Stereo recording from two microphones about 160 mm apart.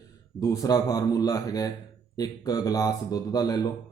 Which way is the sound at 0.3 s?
20° left (ahead or behind).